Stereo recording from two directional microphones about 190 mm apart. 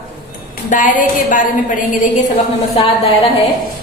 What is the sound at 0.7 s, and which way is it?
Speech, 45° left (ahead or behind).